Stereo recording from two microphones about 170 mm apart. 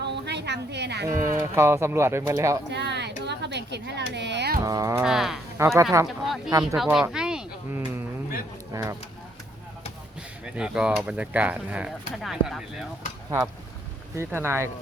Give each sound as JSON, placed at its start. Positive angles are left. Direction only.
{"t": 0.0, "sound": "a sound", "side_deg": -85}
{"t": 1.0, "sound": "speech", "side_deg": -15}
{"t": 2.6, "sound": "a sound", "side_deg": -90}
{"t": 4.6, "sound": "speech", "side_deg": -20}
{"t": 5.0, "sound": "speech", "side_deg": 0}
{"t": 5.5, "sound": "speech", "side_deg": -15}
{"t": 6.1, "sound": "speech", "side_deg": 0}
{"t": 6.5, "sound": "speech", "side_deg": -20}
{"t": 6.8, "sound": "a sound", "side_deg": -5}
{"t": 10.4, "sound": "speech", "side_deg": -5}
{"t": 14.2, "sound": "speech", "side_deg": -15}